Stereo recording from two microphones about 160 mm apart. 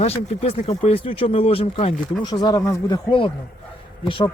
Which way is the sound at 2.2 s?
25° left (ahead or behind).